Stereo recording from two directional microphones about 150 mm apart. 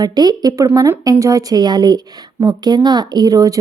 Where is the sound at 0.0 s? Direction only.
25° right (ahead or behind).